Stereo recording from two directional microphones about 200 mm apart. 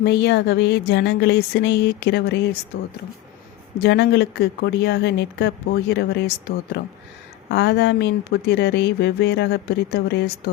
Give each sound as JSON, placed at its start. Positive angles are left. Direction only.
{"t": 0.0, "sound": "speech", "side_deg": 60}
{"t": 3.8, "sound": "speech", "side_deg": 55}